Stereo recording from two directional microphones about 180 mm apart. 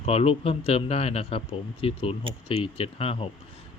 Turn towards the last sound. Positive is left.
turn(degrees=30)  # may be behind; listen again after turning